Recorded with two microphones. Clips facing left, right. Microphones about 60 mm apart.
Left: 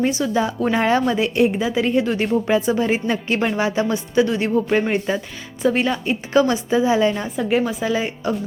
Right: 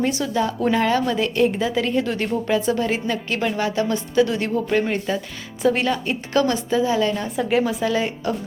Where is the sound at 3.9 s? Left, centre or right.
Centre.